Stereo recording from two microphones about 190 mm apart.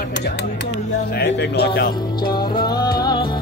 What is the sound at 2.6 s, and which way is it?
Music, 20° left (ahead or behind).